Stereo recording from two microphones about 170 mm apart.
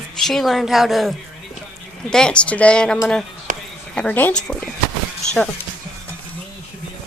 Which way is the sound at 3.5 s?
50° right (ahead or behind).